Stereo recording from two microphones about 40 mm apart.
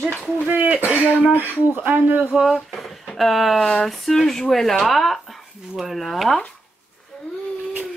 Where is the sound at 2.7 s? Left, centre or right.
Centre.